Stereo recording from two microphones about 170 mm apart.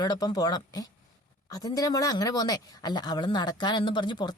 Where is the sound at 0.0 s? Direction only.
25° left (ahead or behind).